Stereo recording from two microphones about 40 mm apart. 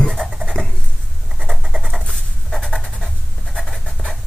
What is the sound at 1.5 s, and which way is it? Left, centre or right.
Writing, centre.